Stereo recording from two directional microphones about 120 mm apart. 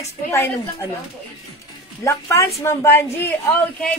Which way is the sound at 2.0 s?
25° left (ahead or behind).